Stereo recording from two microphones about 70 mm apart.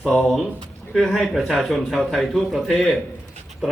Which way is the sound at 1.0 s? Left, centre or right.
Centre.